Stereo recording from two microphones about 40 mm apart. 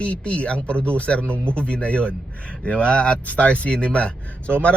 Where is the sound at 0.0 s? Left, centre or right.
Left.